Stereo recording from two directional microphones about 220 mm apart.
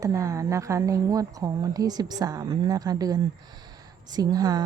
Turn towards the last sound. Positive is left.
turn(degrees=-15)  # may be behind; listen again after turning